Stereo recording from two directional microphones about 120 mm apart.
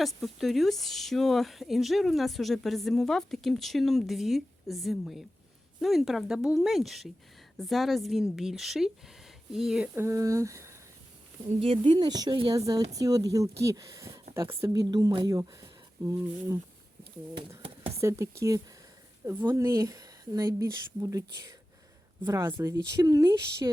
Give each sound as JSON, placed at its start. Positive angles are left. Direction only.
{"t": 0.0, "sound": "speech", "side_deg": 0}
{"t": 10.0, "sound": "speech", "side_deg": -25}
{"t": 11.6, "sound": "a woman's voice", "side_deg": -45}
{"t": 17.6, "sound": "a sound", "side_deg": -50}
{"t": 18.0, "sound": "speech", "side_deg": -25}